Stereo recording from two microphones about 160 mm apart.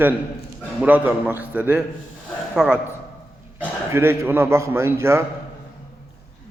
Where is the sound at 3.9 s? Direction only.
15° right (ahead or behind).